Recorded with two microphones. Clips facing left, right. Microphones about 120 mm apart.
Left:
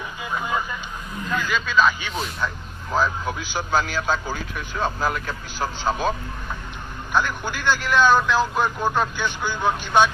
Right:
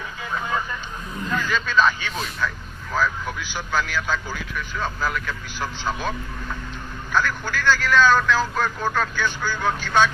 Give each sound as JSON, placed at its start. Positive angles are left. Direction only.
{"t": 0.3, "sound": "vehicle", "side_deg": 15}
{"t": 1.3, "sound": "speech", "side_deg": 5}
{"t": 2.9, "sound": "speech", "side_deg": 25}
{"t": 7.1, "sound": "a man's voice", "side_deg": 20}